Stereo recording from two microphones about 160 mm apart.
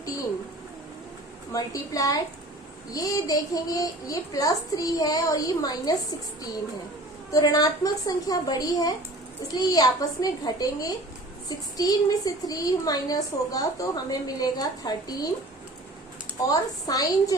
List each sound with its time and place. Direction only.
1.5 s a woman's voice: 20° left (ahead or behind)
7.3 s a woman's voice: 20° left (ahead or behind)
16.5 s a woman's voice: 25° left (ahead or behind)